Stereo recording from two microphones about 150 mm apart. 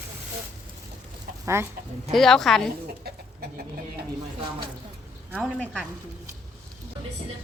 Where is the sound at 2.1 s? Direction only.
Centre (ahead or behind).